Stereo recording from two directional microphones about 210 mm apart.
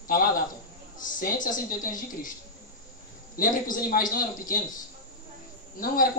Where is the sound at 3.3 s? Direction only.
40° left (ahead or behind).